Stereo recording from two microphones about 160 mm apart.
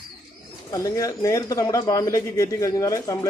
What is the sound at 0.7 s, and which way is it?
A man's voice, 20° left (ahead or behind).